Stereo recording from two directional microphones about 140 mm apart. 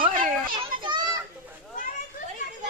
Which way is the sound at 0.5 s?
35° right (ahead or behind).